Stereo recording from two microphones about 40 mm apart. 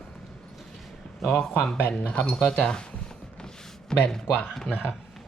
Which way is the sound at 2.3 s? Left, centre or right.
Centre.